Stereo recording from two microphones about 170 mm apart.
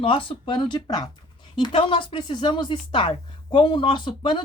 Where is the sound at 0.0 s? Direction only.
30° left (ahead or behind).